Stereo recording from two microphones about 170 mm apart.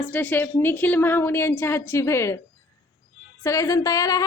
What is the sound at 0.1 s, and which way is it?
A woman's voice, 10° left (ahead or behind).